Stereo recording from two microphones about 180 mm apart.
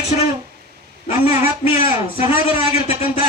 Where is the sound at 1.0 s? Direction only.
30° left (ahead or behind).